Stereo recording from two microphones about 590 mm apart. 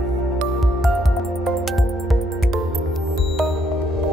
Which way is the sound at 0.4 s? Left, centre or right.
Centre.